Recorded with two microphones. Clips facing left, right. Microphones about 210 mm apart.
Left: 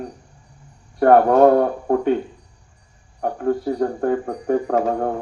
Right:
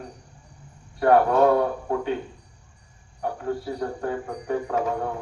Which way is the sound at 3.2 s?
45° left (ahead or behind).